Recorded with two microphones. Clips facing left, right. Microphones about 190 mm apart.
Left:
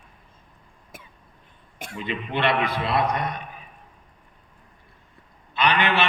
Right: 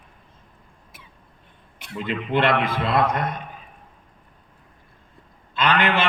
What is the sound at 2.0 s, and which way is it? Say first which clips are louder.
A man's voice: right 4 dB; 50° right (ahead or behind).